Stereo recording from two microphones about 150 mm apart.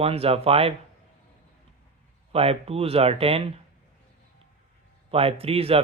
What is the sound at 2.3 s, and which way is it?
Speech, 40° right (ahead or behind).